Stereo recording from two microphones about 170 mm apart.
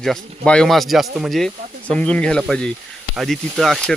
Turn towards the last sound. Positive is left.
turn(degrees=0)  # may be behind; listen again after turning